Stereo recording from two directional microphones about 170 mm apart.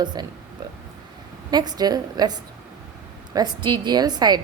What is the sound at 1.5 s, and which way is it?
Speech, 25° right (ahead or behind).